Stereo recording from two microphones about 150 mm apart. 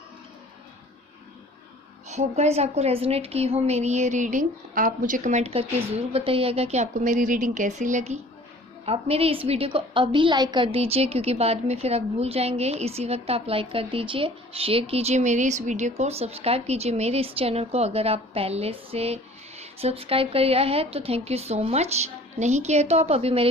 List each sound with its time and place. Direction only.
2.0 s a woman's voice: 50° right (ahead or behind)
8.9 s a woman's voice: 40° right (ahead or behind)